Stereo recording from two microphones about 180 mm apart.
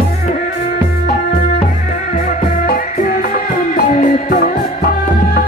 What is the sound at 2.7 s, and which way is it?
Music, 50° left (ahead or behind).